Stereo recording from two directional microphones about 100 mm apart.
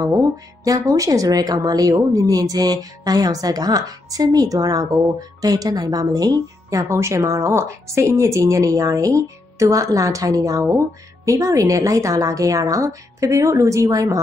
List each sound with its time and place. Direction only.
0.0 s speech: 35° right (ahead or behind)